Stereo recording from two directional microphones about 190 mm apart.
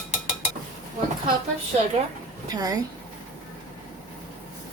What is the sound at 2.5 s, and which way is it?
Speech, 20° right (ahead or behind).